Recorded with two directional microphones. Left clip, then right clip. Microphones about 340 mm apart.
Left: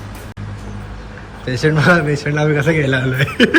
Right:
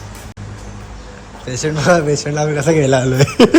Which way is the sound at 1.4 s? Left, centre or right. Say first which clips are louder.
Left 2 dB; centre.